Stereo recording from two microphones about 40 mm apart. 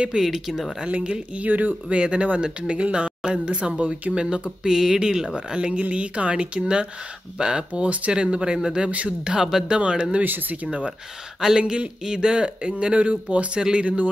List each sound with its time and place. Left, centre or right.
0.2 s speech: centre
0.8 s speech: right
1.4 s speech: right
2.0 s speech: right; by 9.8 s centre
9.8 s speech: right
10.2 s speech: right
11.5 s speech: centre